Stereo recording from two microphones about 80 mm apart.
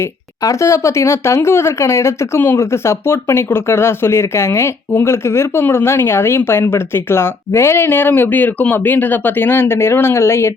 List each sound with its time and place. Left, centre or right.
0.4 s speech: left